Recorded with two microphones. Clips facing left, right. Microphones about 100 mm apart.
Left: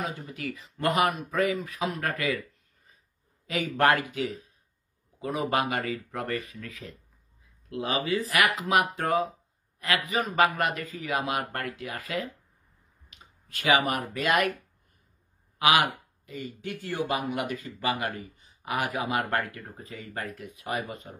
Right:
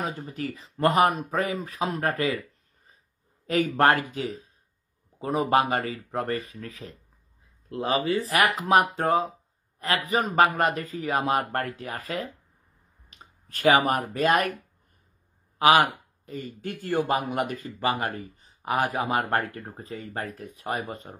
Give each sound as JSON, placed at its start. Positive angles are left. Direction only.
{"t": 0.0, "sound": "speech", "side_deg": -35}
{"t": 3.4, "sound": "speech", "side_deg": -40}
{"t": 15.6, "sound": "speech", "side_deg": -35}